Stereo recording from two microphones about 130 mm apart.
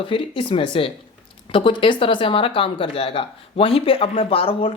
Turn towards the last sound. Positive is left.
turn(degrees=45)  # may be behind; listen again after turning